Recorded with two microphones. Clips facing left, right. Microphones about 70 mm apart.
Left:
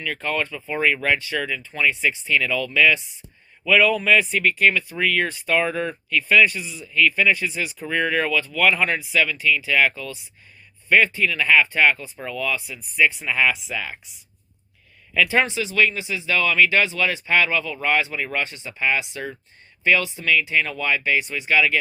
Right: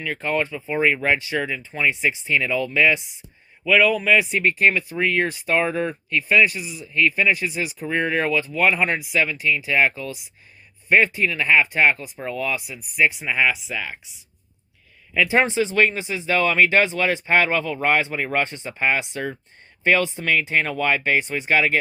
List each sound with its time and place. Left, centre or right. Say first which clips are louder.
0.0 s speech: right 2 dB; centre
3.6 s speech: even; centre
4.4 s speech: even; right
5.8 s speech: even; centre
6.9 s speech: left 1 dB; right; by 14.0 s centre
15.1 s speech: even; centre
15.4 s speech: right 3 dB; right